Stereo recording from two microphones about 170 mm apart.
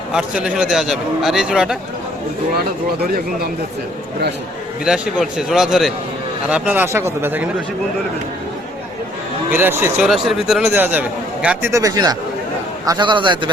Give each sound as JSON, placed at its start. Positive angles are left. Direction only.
{"t": 0.1, "sound": "a man's voice", "side_deg": -5}
{"t": 4.9, "sound": "a man's voice", "side_deg": -5}
{"t": 9.5, "sound": "speech", "side_deg": -15}
{"t": 10.1, "sound": "a man's voice", "side_deg": 0}